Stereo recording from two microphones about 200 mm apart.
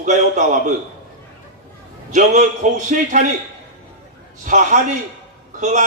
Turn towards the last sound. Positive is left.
turn(degrees=-35)  # may be behind; listen again after turning